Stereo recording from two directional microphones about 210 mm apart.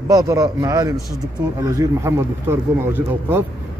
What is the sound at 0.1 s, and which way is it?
Speech, 15° right (ahead or behind).